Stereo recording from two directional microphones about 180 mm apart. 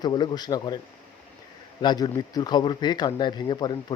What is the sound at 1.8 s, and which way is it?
Speech, 25° left (ahead or behind).